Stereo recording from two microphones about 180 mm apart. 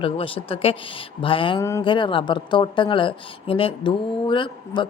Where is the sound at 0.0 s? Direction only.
30° left (ahead or behind).